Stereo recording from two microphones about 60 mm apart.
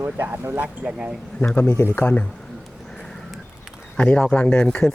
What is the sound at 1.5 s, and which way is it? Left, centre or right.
Speech, left.